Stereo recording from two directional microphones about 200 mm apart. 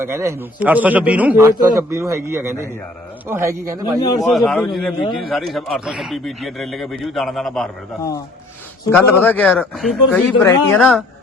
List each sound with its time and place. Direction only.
0.0 s a man's voice: 15° right (ahead or behind)
4.1 s speech: 15° left (ahead or behind)
4.4 s a man's voice: centre (ahead or behind)
8.8 s speech: 10° left (ahead or behind)
10.3 s speech: 15° left (ahead or behind)
10.8 s a man's voice: centre (ahead or behind)